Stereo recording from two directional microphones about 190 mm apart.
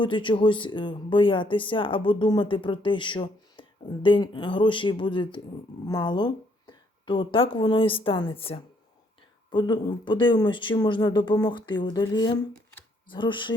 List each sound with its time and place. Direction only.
0.0 s a woman's voice: 25° left (ahead or behind)